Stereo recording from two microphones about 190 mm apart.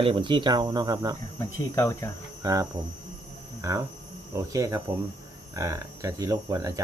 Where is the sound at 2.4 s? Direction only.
20° right (ahead or behind).